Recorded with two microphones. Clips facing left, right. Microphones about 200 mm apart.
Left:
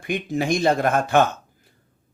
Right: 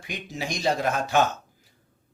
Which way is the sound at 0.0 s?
55° left (ahead or behind).